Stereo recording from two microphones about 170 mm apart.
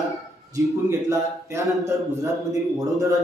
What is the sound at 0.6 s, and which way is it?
Speech, 15° right (ahead or behind).